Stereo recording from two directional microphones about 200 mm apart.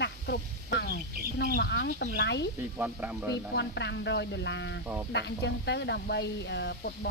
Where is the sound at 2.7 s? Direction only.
10° right (ahead or behind).